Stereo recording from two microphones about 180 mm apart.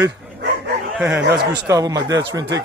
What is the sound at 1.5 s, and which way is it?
Speech, 20° right (ahead or behind).